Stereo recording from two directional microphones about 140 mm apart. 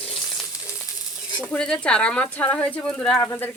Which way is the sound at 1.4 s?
5° left (ahead or behind).